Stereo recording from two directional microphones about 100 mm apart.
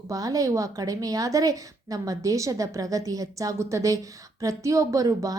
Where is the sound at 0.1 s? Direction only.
35° right (ahead or behind).